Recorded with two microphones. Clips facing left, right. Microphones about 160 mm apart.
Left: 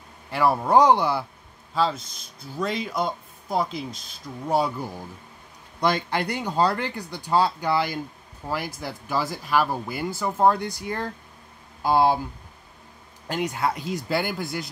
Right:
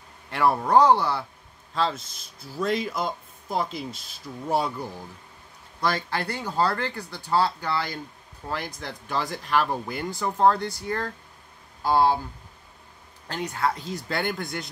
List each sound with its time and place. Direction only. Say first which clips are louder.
0.3 s speech: left 1 dB; centre (ahead or behind)
0.7 s speech: left 1 dB; 15° left (ahead or behind)
1.8 s speech: left 2 dB; centre (ahead or behind)
5.8 s speech: left 3 dB; 20° left (ahead or behind)
13.3 s speech: left 2 dB; 10° left (ahead or behind)